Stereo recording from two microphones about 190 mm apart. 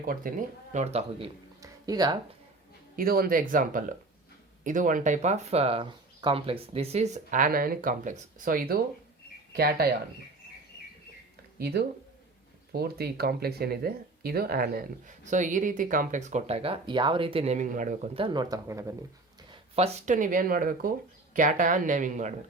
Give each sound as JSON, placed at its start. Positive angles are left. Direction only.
{"t": 0.0, "sound": "speech", "side_deg": -50}
{"t": 1.6, "sound": "a sound", "side_deg": -20}
{"t": 2.9, "sound": "speech", "side_deg": -50}
{"t": 11.6, "sound": "speech", "side_deg": -55}
{"t": 19.5, "sound": "speech", "side_deg": -30}